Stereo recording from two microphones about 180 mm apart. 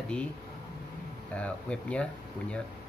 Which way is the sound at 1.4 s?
5° left (ahead or behind).